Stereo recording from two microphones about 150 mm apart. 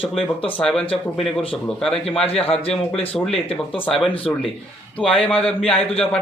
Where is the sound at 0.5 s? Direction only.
5° left (ahead or behind).